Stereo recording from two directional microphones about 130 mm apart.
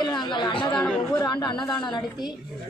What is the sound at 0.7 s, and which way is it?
Speech, 5° left (ahead or behind).